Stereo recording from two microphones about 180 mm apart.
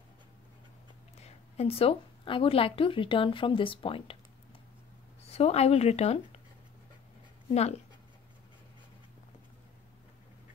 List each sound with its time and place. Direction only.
1.2 s a woman's voice: 35° left (ahead or behind)
5.2 s speech: 35° left (ahead or behind)
7.5 s speech: 35° left (ahead or behind)